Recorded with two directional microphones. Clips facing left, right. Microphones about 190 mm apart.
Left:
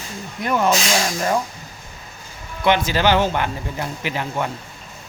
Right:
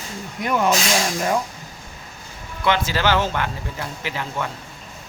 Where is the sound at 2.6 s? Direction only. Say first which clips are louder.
Left 3 dB; 15° left (ahead or behind).